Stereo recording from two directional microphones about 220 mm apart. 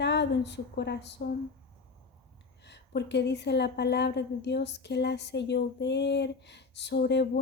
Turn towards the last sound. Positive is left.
turn(degrees=50)  # may be behind; listen again after turning